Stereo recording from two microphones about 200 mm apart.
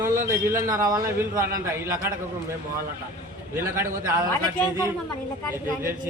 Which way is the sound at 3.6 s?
15° right (ahead or behind).